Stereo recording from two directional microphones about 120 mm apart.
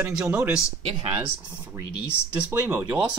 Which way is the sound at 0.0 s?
10° right (ahead or behind).